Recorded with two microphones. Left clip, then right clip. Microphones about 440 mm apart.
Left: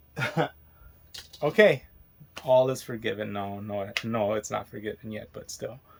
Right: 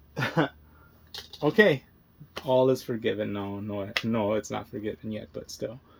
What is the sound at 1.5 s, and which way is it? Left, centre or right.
Speech, centre.